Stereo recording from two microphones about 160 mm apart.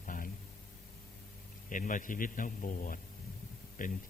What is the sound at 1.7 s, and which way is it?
A man's voice, 55° left (ahead or behind).